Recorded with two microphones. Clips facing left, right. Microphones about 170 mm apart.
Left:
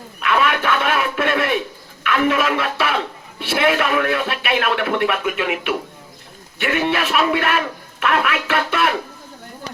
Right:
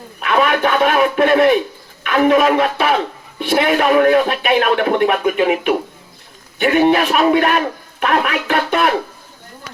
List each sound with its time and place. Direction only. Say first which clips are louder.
0.2 s a man's voice: right 4 dB; 40° right (ahead or behind)